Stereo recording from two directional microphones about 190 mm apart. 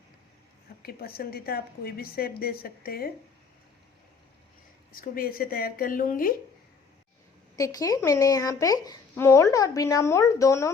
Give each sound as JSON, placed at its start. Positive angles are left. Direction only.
{"t": 0.8, "sound": "a woman's voice", "side_deg": 55}
{"t": 4.9, "sound": "a woman's voice", "side_deg": 50}
{"t": 7.5, "sound": "speech", "side_deg": 20}